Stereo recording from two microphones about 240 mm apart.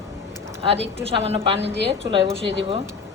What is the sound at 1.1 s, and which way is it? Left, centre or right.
A woman's voice, right.